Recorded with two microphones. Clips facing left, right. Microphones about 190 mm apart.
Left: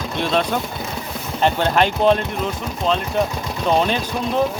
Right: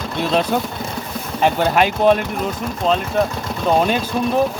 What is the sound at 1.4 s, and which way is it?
Speech, 10° right (ahead or behind).